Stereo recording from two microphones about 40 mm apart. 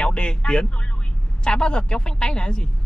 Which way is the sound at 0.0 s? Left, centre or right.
Left.